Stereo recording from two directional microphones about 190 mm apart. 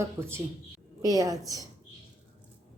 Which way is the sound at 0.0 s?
15° right (ahead or behind).